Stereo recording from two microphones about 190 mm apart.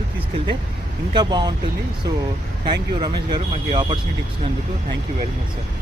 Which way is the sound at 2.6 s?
20° right (ahead or behind).